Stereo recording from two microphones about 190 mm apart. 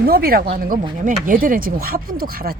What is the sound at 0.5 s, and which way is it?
Speech, 45° right (ahead or behind).